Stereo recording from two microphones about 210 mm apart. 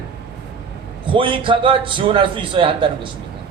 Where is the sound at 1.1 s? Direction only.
25° right (ahead or behind).